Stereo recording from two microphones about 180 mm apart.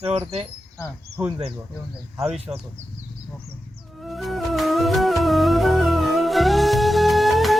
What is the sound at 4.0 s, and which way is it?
Music, centre (ahead or behind).